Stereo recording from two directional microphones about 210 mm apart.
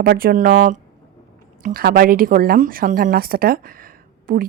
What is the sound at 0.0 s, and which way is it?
A woman's voice, 45° right (ahead or behind).